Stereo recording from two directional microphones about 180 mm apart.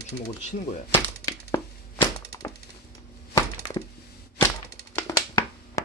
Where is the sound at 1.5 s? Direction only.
20° left (ahead or behind).